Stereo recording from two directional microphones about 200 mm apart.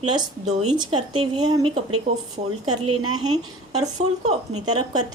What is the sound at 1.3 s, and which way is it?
Speech, 20° right (ahead or behind).